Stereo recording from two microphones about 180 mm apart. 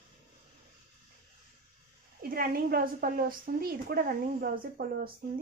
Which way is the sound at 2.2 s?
55° right (ahead or behind).